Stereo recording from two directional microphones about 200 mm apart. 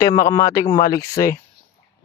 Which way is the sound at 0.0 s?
15° left (ahead or behind).